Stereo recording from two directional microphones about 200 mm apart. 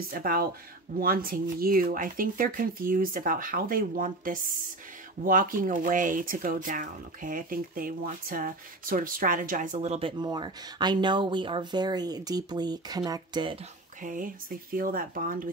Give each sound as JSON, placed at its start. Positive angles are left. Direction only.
{"t": 0.1, "sound": "speech", "side_deg": -45}
{"t": 14.0, "sound": "speech", "side_deg": -45}